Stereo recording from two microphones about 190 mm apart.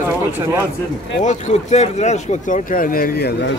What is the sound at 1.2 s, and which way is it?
Speech, 40° left (ahead or behind).